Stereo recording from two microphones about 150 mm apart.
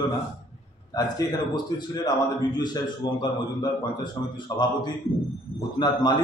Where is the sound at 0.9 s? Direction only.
25° left (ahead or behind).